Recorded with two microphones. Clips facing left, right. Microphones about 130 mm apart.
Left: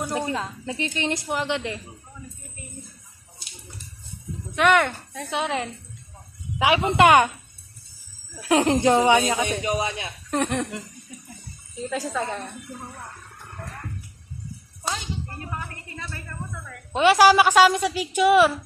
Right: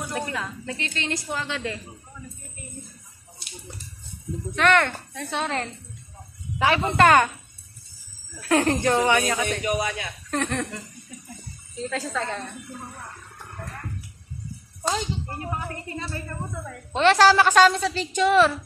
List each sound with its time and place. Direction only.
0.1 s a woman's voice: 25° left (ahead or behind)
4.6 s speech: 10° left (ahead or behind)
8.4 s speech: 15° left (ahead or behind)
11.8 s speech: 10° left (ahead or behind)
15.7 s a woman's voice: 30° right (ahead or behind)
16.9 s speech: 10° left (ahead or behind)